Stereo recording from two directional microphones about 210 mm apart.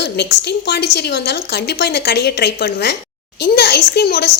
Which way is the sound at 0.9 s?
50° left (ahead or behind).